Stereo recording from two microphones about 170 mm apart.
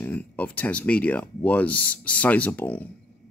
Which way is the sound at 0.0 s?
10° left (ahead or behind).